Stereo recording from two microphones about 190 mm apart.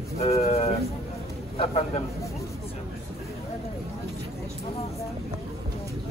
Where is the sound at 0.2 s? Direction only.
35° left (ahead or behind).